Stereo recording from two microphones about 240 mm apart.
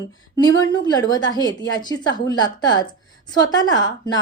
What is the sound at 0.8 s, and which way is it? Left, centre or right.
A woman's voice, centre.